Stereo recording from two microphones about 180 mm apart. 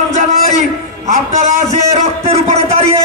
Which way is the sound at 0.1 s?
40° right (ahead or behind).